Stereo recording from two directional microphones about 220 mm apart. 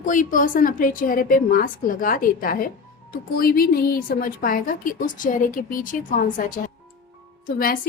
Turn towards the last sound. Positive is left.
turn(degrees=40)  # may be behind; listen again after turning